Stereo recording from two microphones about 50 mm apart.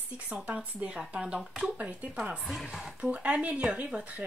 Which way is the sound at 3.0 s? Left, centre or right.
Right.